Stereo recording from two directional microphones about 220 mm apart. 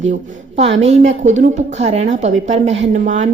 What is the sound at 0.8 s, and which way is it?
A woman's voice, 30° right (ahead or behind).